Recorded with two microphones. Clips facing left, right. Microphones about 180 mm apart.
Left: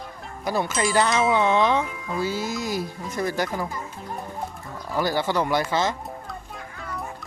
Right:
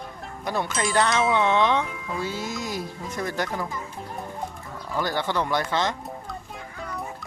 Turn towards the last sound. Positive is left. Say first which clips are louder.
# left 2 dB
turn(degrees=5)  # may be behind; listen again after turning